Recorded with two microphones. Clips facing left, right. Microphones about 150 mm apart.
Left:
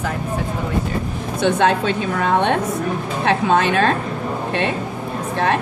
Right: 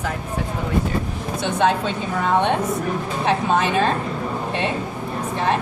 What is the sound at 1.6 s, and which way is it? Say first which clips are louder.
Speech: left 2 dB; 75° left (ahead or behind).